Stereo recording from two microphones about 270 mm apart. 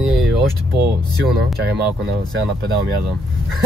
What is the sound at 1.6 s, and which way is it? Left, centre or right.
Speech, right.